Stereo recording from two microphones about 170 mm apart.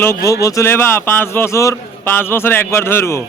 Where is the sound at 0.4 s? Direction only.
15° left (ahead or behind).